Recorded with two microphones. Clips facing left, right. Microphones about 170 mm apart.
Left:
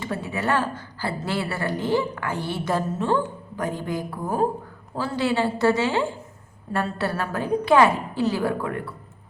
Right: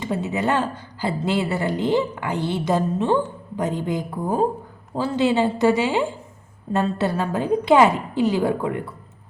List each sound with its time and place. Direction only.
0.0 s a woman's voice: 20° right (ahead or behind)